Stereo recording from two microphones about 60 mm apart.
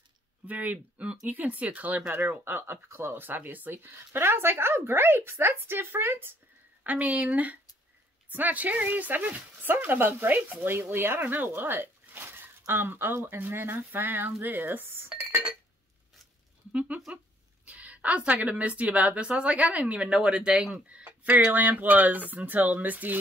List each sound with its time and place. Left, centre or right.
0.5 s speech: right
6.8 s speech: right
16.7 s speech: right